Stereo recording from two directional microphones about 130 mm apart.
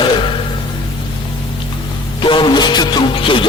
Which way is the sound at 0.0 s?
40° left (ahead or behind).